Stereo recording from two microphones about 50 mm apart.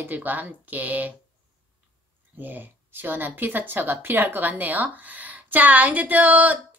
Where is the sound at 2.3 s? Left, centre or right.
Right.